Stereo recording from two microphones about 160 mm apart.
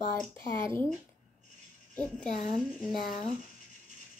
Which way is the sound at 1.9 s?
10° left (ahead or behind).